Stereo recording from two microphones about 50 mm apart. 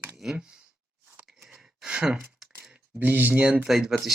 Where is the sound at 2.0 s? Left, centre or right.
Centre.